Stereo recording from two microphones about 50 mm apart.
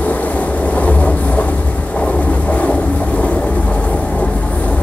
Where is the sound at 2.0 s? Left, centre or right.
Left.